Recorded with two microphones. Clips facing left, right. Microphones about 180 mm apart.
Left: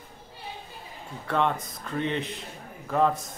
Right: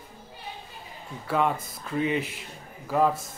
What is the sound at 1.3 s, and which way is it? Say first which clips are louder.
A man's voice: right 1 dB; 5° right (ahead or behind).